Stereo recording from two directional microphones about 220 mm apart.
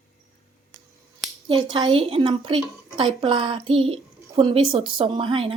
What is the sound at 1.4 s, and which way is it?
A woman's voice, 20° right (ahead or behind).